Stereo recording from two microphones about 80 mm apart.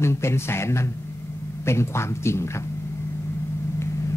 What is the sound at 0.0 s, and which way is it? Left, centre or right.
Speech, left.